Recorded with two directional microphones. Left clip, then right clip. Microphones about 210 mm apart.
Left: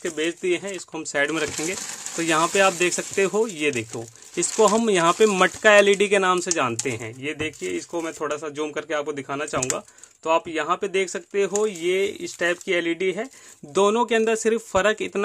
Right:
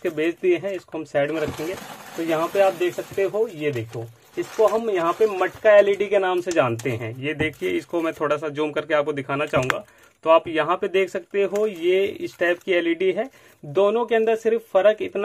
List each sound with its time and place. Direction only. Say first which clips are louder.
0.0 s speech: right 3 dB; 15° left (ahead or behind); by 1.4 s 30° left (ahead or behind)
2.3 s speech: even; 45° left (ahead or behind); by 13.3 s 20° left (ahead or behind)
13.7 s speech: even; 35° left (ahead or behind)